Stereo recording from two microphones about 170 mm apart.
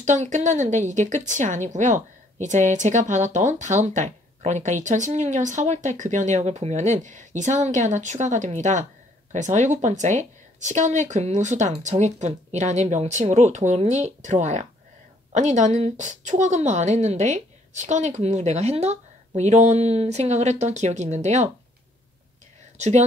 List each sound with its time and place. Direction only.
0.0 s speech: 45° right (ahead or behind)
22.8 s speech: 40° right (ahead or behind)